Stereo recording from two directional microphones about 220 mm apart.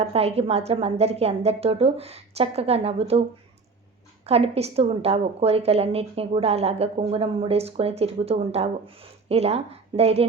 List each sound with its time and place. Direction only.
0.0 s a woman's voice: 30° right (ahead or behind)